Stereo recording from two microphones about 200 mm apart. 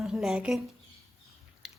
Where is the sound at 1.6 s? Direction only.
5° right (ahead or behind).